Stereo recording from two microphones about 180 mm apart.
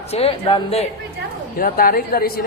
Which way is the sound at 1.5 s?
55° left (ahead or behind).